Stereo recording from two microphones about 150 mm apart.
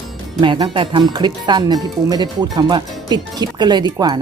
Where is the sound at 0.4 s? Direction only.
30° right (ahead or behind).